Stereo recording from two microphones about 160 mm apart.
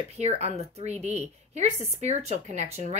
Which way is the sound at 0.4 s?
40° right (ahead or behind).